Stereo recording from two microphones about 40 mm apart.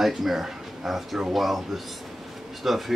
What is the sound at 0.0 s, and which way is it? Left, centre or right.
Speech, centre.